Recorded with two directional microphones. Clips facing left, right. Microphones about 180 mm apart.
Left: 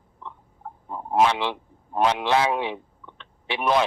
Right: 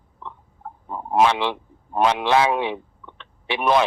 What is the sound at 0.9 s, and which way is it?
A man's voice, 75° right (ahead or behind).